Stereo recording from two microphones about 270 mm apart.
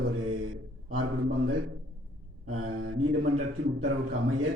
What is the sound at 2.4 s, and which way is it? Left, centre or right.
Speech, right.